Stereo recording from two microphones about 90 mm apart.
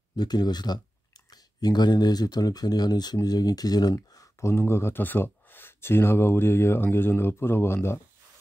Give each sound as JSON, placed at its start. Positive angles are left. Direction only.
{"t": 0.1, "sound": "speech", "side_deg": 50}